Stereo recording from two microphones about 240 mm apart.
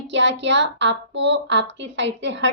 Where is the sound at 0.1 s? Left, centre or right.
Right.